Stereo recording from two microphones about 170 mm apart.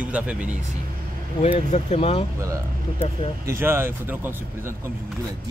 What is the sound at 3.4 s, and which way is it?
Speech, 15° right (ahead or behind).